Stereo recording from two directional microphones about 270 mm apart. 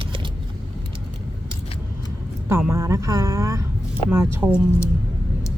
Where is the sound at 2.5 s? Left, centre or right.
Centre.